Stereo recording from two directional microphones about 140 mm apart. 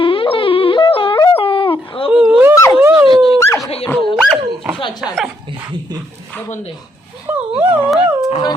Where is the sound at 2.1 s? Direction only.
5° right (ahead or behind).